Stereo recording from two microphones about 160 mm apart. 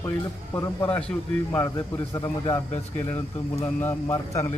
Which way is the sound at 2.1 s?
20° left (ahead or behind).